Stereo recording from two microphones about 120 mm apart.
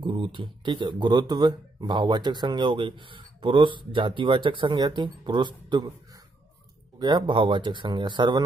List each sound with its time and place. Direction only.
0.0 s speech: 45° right (ahead or behind)
7.0 s speech: 40° right (ahead or behind)